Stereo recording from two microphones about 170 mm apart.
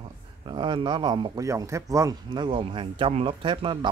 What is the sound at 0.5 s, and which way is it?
Speech, 30° right (ahead or behind).